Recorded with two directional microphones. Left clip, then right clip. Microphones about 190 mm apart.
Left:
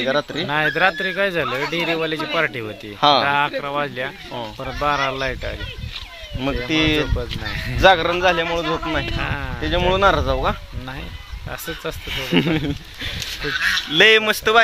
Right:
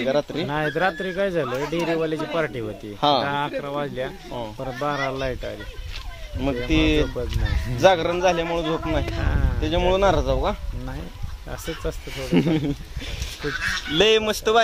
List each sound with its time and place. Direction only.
0.5 s speech: 15° right (ahead or behind)
3.0 s speech: 10° left (ahead or behind)
3.3 s speech: 10° right (ahead or behind)
4.4 s speech: 5° left (ahead or behind)
4.8 s speech: 10° right (ahead or behind)
6.4 s speech: 5° left (ahead or behind)
9.2 s speech: 10° right (ahead or behind)
9.6 s speech: 5° left (ahead or behind)
12.1 s speech: 5° left (ahead or behind)
13.4 s speech: 65° right (ahead or behind)
13.9 s speech: centre (ahead or behind)